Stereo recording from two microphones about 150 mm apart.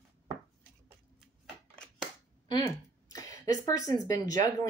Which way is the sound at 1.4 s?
5° left (ahead or behind).